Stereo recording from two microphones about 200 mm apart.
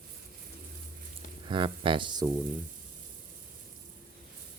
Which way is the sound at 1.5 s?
25° right (ahead or behind).